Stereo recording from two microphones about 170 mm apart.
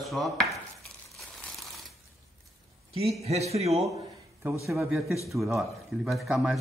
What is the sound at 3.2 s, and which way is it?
Speech, 40° right (ahead or behind).